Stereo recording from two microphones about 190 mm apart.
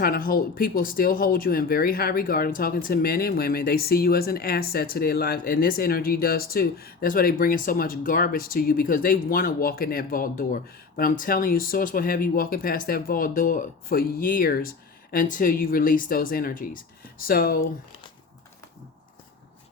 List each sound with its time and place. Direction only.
0.0 s speech: 50° left (ahead or behind)